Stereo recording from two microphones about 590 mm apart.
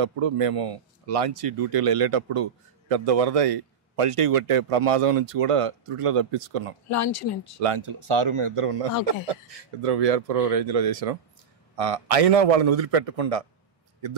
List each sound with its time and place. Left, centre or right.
0.0 s speech: right
6.9 s speech: left
7.6 s speech: right
9.0 s a man's voice: right